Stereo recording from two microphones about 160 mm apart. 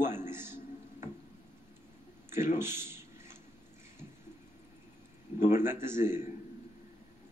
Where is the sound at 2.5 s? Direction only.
15° right (ahead or behind).